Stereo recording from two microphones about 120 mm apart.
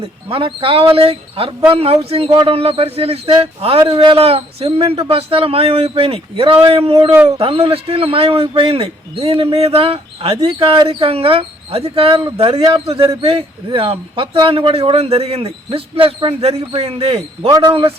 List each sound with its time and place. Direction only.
0.0 s speech: 50° right (ahead or behind)
17.5 s speech: 40° right (ahead or behind)